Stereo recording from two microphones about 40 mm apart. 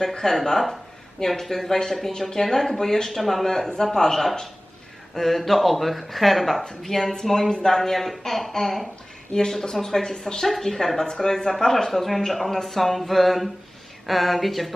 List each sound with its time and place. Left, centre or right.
0.0 s speech: centre
7.3 s speech: centre
9.3 s speech: centre
11.9 s speech: centre